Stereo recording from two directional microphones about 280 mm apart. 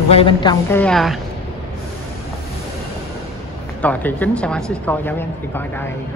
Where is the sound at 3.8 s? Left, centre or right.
Centre.